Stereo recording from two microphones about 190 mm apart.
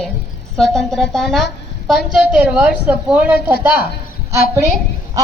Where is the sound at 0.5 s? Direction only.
Centre (ahead or behind).